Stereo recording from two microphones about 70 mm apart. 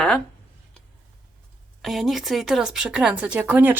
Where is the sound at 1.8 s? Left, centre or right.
Centre.